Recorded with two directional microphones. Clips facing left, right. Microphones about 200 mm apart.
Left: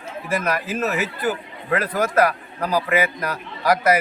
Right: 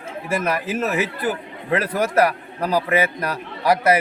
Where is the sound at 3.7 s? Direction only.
30° right (ahead or behind).